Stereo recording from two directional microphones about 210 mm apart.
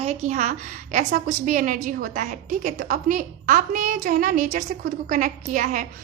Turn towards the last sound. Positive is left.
turn(degrees=-35)  # may be behind; listen again after turning